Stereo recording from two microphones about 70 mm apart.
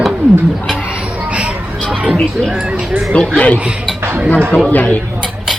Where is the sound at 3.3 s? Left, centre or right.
Centre.